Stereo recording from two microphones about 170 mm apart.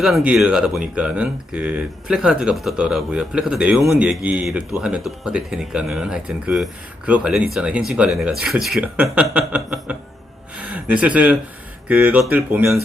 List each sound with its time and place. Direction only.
0.0 s speech: centre (ahead or behind)